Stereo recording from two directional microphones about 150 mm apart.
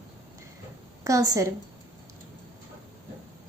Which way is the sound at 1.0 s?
25° right (ahead or behind).